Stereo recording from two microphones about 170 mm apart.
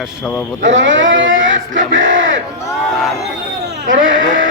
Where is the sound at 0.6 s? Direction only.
90° right.